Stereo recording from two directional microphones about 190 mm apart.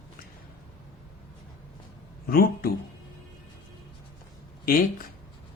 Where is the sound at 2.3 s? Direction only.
50° left (ahead or behind).